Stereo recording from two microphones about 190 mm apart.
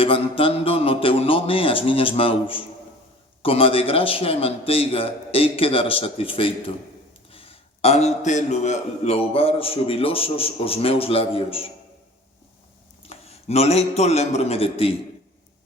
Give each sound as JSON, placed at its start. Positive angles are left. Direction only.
{"t": 0.0, "sound": "a man's voice", "side_deg": 30}
{"t": 13.1, "sound": "a man's voice", "side_deg": 35}